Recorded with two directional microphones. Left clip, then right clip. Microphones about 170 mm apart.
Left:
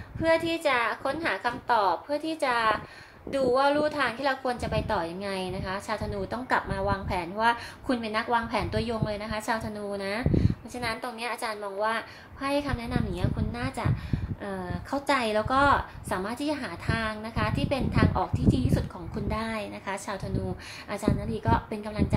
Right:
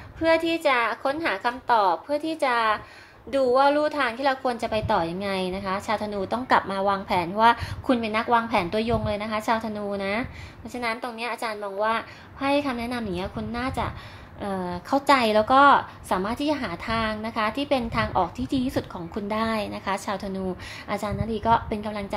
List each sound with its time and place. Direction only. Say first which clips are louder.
0.2 s a woman's voice: right 3 dB; 30° right (ahead or behind)